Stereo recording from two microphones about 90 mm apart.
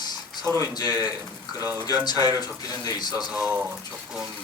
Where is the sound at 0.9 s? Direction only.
20° right (ahead or behind).